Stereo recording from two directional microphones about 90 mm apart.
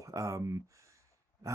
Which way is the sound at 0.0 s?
35° right (ahead or behind).